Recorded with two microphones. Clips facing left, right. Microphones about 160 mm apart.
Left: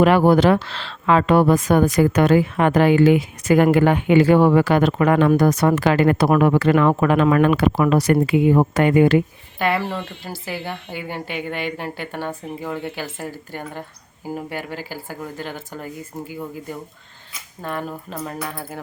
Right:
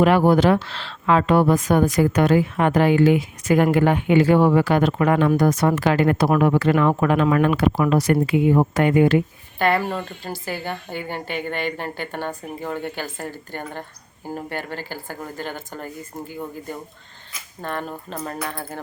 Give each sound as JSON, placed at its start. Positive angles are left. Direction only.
{"t": 0.0, "sound": "speech", "side_deg": 75}
{"t": 9.6, "sound": "speech", "side_deg": 0}